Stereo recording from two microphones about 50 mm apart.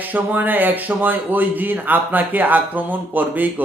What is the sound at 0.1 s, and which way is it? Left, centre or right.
A man's voice, right.